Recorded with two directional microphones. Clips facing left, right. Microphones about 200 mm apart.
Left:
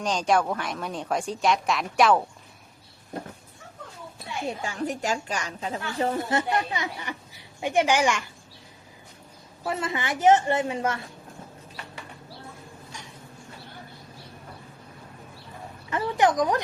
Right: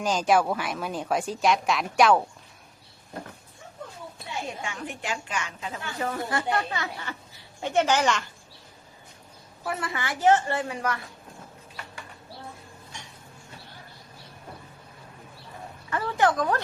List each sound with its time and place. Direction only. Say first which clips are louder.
0.0 s speech: right 1 dB; 5° right (ahead or behind)
4.4 s a woman's voice: left 5 dB; 35° left (ahead or behind); by 8.3 s 10° left (ahead or behind)
9.6 s a woman's voice: left 3 dB; 20° left (ahead or behind)
15.9 s a woman's voice: left 1 dB; 20° left (ahead or behind)